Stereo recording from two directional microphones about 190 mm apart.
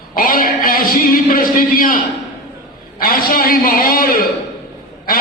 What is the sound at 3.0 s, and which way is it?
A man's voice, 50° left (ahead or behind).